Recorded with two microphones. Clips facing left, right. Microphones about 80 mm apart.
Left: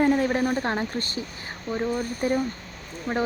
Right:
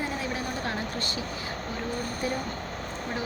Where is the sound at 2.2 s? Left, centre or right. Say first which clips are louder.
Left 7 dB; left.